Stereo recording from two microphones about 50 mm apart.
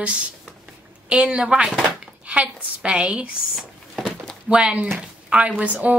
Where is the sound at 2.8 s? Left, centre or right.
Right.